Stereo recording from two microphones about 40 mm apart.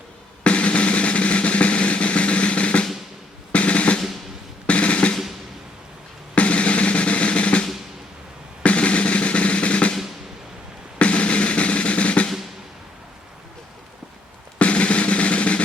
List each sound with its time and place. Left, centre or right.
0.4 s drum: left
6.3 s drum: left
8.6 s drum: left
10.9 s drum: left
14.6 s drum: left